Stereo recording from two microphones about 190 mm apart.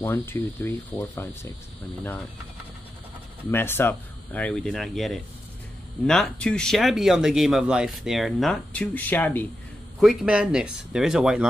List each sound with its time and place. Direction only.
0.0 s speech: 10° left (ahead or behind)
3.5 s speech: 10° left (ahead or behind)
9.9 s speech: 5° right (ahead or behind)